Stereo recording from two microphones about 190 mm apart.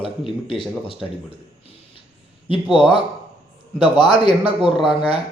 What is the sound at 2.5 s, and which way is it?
A man's voice, 25° left (ahead or behind).